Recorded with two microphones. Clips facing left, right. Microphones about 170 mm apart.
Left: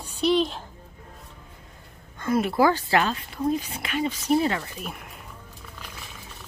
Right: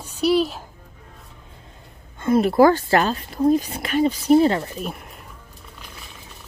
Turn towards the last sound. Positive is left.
turn(degrees=-35)  # may be behind; listen again after turning